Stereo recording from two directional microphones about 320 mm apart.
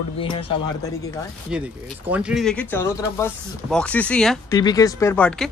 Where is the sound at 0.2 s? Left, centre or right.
Centre.